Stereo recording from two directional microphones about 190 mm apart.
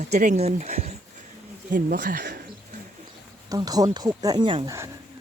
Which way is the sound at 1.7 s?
50° right (ahead or behind).